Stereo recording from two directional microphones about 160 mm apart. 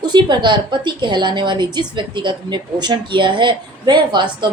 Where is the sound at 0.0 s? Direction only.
30° right (ahead or behind).